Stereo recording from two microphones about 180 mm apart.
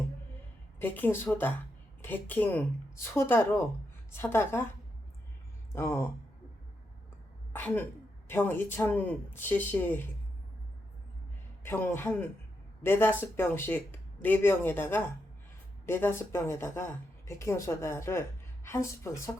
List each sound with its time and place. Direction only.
0.8 s speech: 10° left (ahead or behind)
5.7 s speech: 15° left (ahead or behind)
7.5 s speech: 10° left (ahead or behind)
11.6 s speech: 10° left (ahead or behind)